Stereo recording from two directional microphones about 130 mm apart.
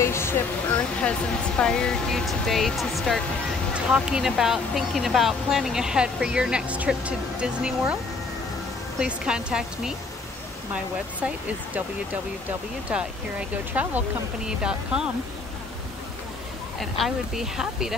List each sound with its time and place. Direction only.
0.0 s a sound: 20° left (ahead or behind)
1.6 s speech: 5° left (ahead or behind)
9.0 s speech: 5° right (ahead or behind)
17.0 s speech: 5° right (ahead or behind)